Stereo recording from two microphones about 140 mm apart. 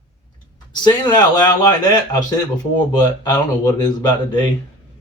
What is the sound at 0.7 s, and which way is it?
Speech, 30° left (ahead or behind).